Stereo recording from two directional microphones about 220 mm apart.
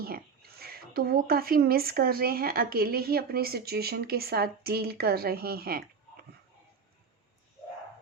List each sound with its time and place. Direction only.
0.0 s speech: 45° right (ahead or behind)